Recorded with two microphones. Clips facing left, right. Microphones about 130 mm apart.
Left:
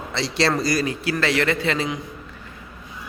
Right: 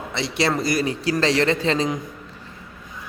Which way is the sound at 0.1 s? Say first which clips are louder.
Left 1 dB; 20° right (ahead or behind).